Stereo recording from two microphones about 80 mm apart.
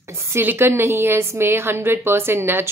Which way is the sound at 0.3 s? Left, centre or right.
Right.